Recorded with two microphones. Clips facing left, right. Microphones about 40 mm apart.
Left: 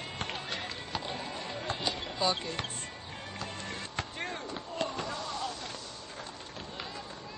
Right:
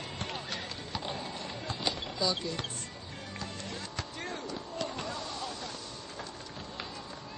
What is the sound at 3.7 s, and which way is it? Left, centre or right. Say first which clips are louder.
Music: left 2 dB; left.